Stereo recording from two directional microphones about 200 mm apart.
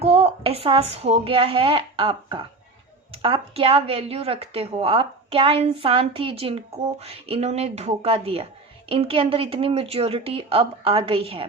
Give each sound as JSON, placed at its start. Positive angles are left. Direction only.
{"t": 0.0, "sound": "a woman's voice", "side_deg": -30}